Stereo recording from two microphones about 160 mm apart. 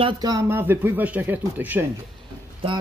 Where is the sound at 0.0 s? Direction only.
25° right (ahead or behind).